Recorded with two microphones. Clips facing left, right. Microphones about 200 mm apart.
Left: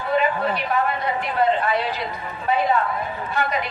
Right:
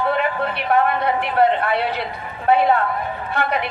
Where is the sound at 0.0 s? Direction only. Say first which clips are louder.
Right 1 dB; 65° right (ahead or behind).